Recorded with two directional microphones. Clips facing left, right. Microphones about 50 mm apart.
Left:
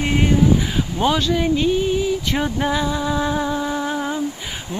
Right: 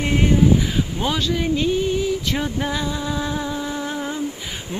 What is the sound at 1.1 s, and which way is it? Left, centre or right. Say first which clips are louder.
Speech: even; centre.